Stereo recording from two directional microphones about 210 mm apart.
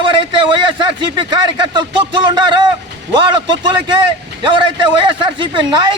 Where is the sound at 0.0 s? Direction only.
25° right (ahead or behind).